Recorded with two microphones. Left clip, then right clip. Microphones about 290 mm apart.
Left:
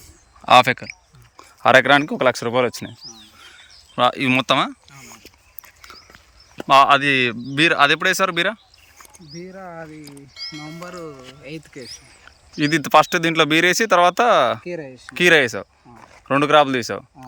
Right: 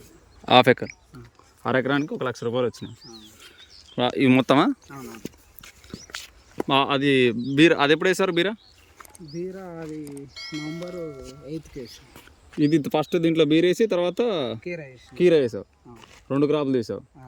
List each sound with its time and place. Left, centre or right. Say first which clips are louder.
0.4 s speech: left 3 dB; centre
1.6 s speech: left 11 dB; left
3.1 s a sound: left 3 dB; centre
6.6 s speech: left 9 dB; centre
12.7 s speech: left 11 dB; centre
15.2 s speech: left 5 dB; left